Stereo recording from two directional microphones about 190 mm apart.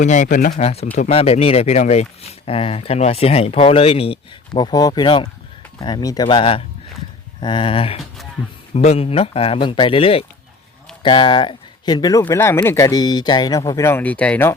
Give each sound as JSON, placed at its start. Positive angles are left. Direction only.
{"t": 0.0, "sound": "speech", "side_deg": 40}
{"t": 0.6, "sound": "speech", "side_deg": 30}